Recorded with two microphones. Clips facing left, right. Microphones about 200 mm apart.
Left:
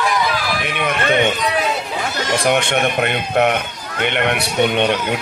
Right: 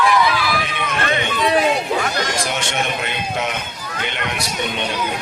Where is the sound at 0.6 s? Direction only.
60° left (ahead or behind).